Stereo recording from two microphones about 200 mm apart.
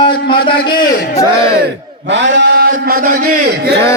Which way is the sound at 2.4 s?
55° right (ahead or behind).